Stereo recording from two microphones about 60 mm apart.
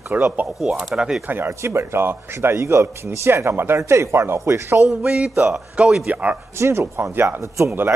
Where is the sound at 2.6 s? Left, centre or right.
Right.